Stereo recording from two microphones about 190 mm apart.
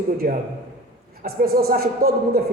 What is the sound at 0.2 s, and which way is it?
A woman's voice, 45° right (ahead or behind).